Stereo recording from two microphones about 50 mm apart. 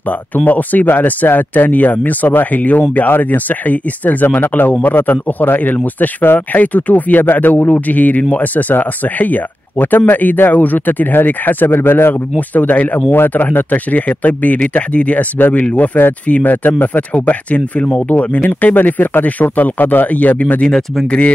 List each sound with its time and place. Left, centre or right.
0.5 s speech: left
13.1 s speech: left
20.6 s speech: centre